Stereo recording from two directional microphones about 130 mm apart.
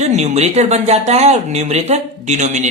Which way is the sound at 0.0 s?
60° right (ahead or behind).